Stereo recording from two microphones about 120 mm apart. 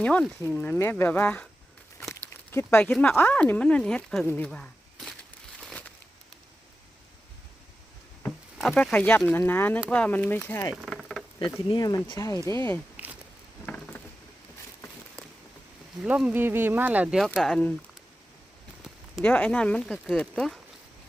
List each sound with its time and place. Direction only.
0.0 s speech: 10° left (ahead or behind)
4.3 s a sound: 10° left (ahead or behind)
8.7 s speech: 15° left (ahead or behind)
10.8 s a sound: centre (ahead or behind)
11.7 s speech: 35° left (ahead or behind)
12.5 s speech: 20° left (ahead or behind)
13.7 s a sound: 15° left (ahead or behind)
16.0 s speech: 10° right (ahead or behind)
17.2 s speech: 5° left (ahead or behind)
19.2 s speech: 10° left (ahead or behind)